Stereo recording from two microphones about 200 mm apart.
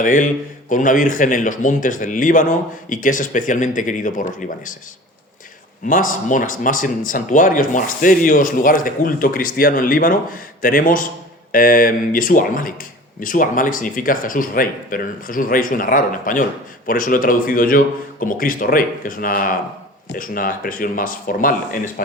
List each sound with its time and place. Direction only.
0.0 s a man's voice: 40° left (ahead or behind)
5.9 s speech: 40° left (ahead or behind)